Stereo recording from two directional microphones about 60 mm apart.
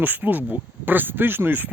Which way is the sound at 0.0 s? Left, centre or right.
Right.